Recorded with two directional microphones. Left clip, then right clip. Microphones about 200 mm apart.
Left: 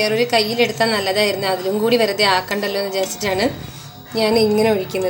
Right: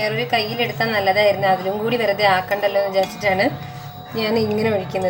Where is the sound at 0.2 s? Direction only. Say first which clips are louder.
Left 4 dB; 25° left (ahead or behind).